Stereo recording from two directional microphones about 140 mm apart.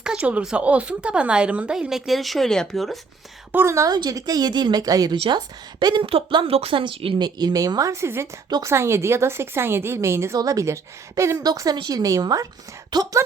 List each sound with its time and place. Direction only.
0.0 s speech: 5° right (ahead or behind)
3.5 s a woman's voice: 20° right (ahead or behind)
5.1 s a woman's voice: 40° right (ahead or behind); by 8.3 s 20° right (ahead or behind)
8.4 s a woman's voice: 30° right (ahead or behind)
8.7 s a woman's voice: 20° right (ahead or behind)